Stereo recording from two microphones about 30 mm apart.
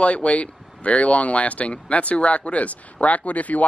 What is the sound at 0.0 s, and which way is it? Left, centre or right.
Speech, left.